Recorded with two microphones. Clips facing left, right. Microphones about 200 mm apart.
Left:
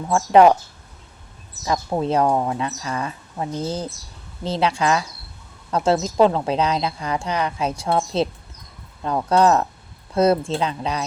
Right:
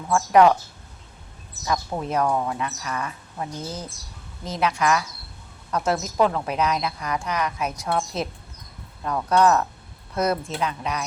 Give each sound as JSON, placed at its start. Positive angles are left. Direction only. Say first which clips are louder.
{"t": 0.1, "sound": "speech", "louder": "left 3 dB", "side_deg": 25}
{"t": 1.6, "sound": "speech", "louder": "left 5 dB", "side_deg": 25}